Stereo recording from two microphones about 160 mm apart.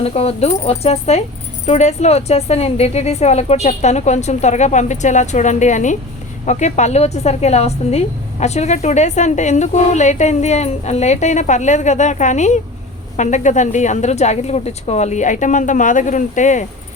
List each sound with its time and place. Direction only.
0.0 s a woman's voice: 40° left (ahead or behind)